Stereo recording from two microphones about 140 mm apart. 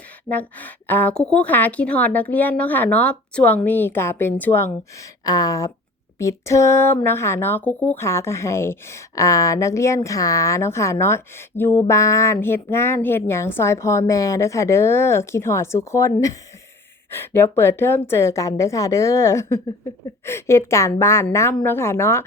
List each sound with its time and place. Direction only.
0.3 s a woman's voice: 10° left (ahead or behind)
5.2 s a woman's voice: 25° left (ahead or behind)